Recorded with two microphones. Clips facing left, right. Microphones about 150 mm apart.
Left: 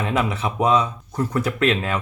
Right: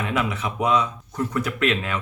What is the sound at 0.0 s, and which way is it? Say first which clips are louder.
Speech: left 3 dB; 35° left (ahead or behind).